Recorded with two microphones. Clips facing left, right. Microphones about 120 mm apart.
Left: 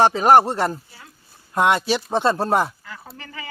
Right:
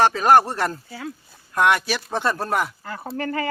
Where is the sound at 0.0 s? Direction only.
20° left (ahead or behind).